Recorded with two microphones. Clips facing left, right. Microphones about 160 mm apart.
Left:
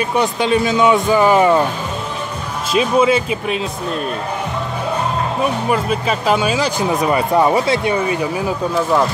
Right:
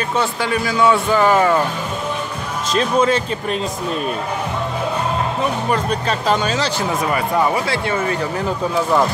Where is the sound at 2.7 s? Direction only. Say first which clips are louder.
Left 2 dB; 10° left (ahead or behind).